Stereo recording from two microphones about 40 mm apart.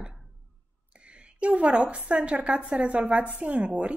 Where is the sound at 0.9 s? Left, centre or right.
Right.